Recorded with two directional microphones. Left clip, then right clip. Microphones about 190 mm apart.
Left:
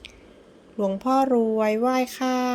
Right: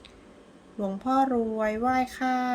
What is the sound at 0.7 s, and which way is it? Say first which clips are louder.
A woman's voice: left 4 dB; 25° left (ahead or behind).